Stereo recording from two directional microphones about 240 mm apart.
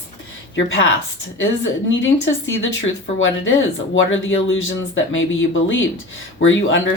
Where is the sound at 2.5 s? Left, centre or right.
Left.